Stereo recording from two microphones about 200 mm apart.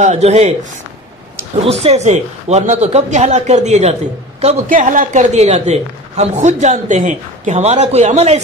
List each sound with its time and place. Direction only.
0.0 s a man's voice: 35° right (ahead or behind)
1.6 s a man's voice: 30° right (ahead or behind)